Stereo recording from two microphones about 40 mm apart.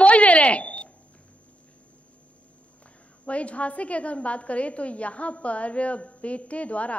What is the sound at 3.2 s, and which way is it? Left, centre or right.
A woman's voice, left.